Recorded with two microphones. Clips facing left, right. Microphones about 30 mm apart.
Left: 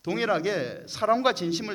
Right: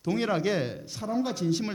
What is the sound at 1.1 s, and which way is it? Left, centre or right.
Speech, left.